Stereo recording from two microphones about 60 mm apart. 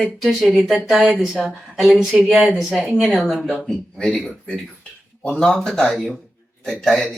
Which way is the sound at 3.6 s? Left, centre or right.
Centre.